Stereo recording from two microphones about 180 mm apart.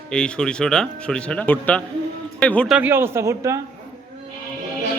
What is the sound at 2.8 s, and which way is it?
Speech, 10° right (ahead or behind).